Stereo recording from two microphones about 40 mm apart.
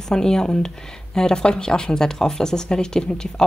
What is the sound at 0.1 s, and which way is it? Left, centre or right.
A woman's voice, centre.